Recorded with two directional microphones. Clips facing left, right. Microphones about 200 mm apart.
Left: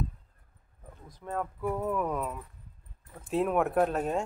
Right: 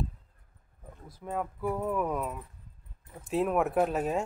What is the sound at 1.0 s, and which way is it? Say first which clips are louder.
Speech: even; 10° right (ahead or behind).